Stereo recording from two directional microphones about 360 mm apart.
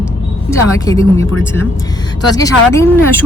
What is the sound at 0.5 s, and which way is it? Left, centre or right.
Speech, centre.